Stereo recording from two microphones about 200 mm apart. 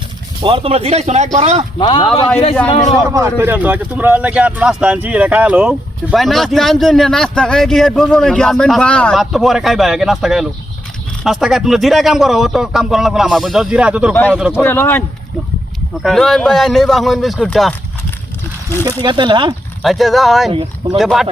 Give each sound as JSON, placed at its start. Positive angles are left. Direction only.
{"t": 0.4, "sound": "speech", "side_deg": -25}
{"t": 1.8, "sound": "speech", "side_deg": 25}
{"t": 2.0, "sound": "speech", "side_deg": 5}
{"t": 3.1, "sound": "speech", "side_deg": -15}
{"t": 14.5, "sound": "speech", "side_deg": 10}
{"t": 16.0, "sound": "speech", "side_deg": 0}
{"t": 18.9, "sound": "speech", "side_deg": -20}
{"t": 19.8, "sound": "speech", "side_deg": 0}